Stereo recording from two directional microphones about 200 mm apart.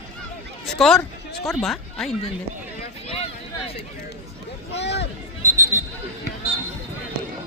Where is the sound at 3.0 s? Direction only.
30° left (ahead or behind).